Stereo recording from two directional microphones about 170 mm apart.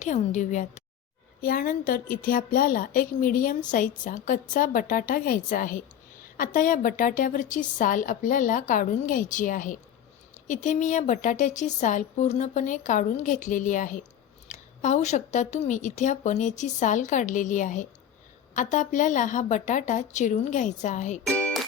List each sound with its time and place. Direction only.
0.0 s a woman's voice: 45° left (ahead or behind)
1.4 s a woman's voice: 55° left (ahead or behind)
21.2 s music: 5° left (ahead or behind)